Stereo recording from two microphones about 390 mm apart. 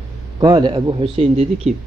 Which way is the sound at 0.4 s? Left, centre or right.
Centre.